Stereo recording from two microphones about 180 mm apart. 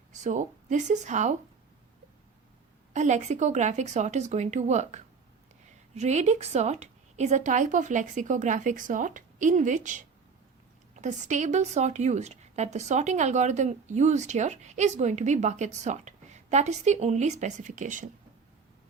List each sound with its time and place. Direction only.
0.1 s speech: 45° right (ahead or behind)
2.9 s a woman's voice: 40° right (ahead or behind)